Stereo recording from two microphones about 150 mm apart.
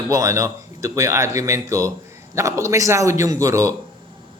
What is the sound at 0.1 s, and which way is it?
A man's voice, 20° right (ahead or behind).